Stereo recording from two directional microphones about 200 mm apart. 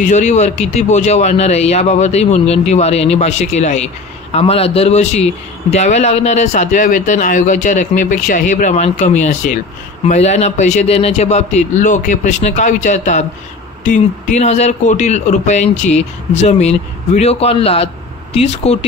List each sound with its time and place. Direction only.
0.0 s speech: 35° left (ahead or behind)